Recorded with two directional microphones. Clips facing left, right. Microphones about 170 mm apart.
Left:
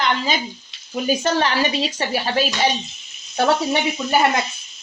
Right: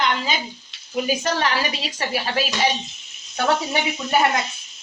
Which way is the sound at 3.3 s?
30° left (ahead or behind).